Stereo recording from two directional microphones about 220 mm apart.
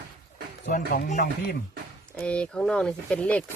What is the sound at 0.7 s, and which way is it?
Speech, 35° left (ahead or behind).